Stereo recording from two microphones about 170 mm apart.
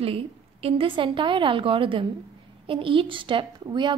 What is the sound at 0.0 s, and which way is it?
A woman's voice, 35° right (ahead or behind).